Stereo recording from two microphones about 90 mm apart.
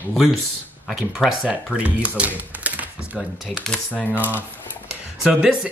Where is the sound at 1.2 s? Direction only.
5° right (ahead or behind).